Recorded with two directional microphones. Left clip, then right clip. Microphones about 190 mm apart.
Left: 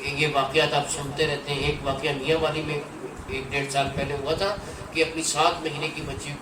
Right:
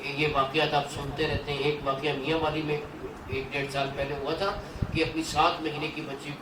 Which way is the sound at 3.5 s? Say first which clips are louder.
Left 6 dB; 40° left (ahead or behind).